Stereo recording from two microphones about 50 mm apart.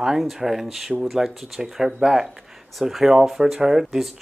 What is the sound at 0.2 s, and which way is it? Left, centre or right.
Speech, centre.